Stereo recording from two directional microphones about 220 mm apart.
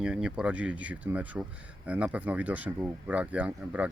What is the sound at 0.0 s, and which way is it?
Speech, 5° right (ahead or behind).